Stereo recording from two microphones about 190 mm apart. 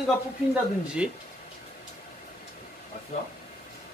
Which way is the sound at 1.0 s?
5° right (ahead or behind).